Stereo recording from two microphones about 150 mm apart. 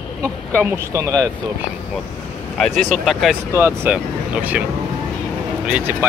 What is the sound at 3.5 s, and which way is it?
Speech, 15° right (ahead or behind).